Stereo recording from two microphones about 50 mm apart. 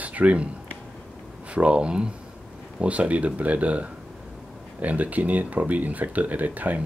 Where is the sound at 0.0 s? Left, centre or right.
Right.